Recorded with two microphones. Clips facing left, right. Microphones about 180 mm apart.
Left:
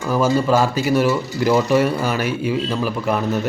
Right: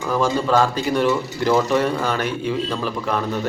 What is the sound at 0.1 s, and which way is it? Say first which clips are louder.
A man's voice: left 2 dB; 10° left (ahead or behind).